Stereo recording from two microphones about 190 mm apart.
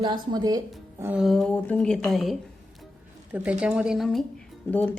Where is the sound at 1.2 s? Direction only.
Centre (ahead or behind).